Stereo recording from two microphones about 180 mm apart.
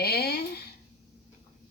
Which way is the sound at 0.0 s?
60° left (ahead or behind).